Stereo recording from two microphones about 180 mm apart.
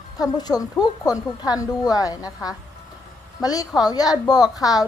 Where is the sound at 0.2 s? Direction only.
20° left (ahead or behind).